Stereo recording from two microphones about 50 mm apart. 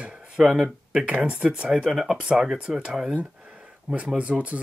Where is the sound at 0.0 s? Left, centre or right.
Centre.